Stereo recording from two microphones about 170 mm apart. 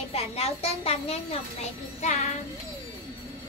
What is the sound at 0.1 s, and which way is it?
A woman's voice, 35° left (ahead or behind).